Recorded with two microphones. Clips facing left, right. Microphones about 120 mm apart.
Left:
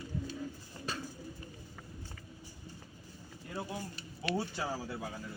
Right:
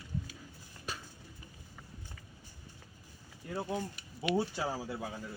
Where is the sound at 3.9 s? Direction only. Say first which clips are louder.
Right 2 dB; 15° right (ahead or behind).